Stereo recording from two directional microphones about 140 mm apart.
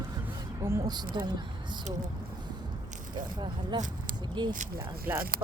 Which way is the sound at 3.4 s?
30° right (ahead or behind).